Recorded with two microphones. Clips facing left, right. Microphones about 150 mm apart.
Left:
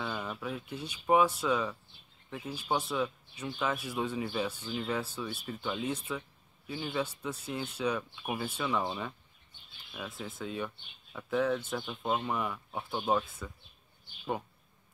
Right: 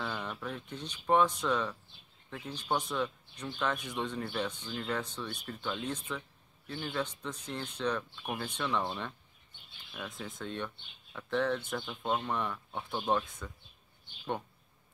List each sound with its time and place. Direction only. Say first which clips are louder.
0.0 s speech: left 1 dB; 5° left (ahead or behind)